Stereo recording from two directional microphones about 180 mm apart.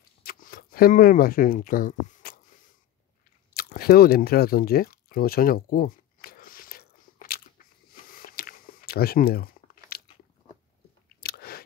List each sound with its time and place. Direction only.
0.2 s camera: 55° left (ahead or behind)
3.5 s a sound: 55° left (ahead or behind)
11.1 s biting: 60° left (ahead or behind)